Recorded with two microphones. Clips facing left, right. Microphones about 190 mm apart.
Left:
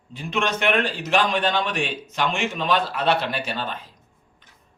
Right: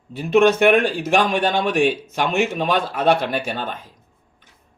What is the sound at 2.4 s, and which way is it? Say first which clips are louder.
A man's voice: right 2 dB; 50° right (ahead or behind).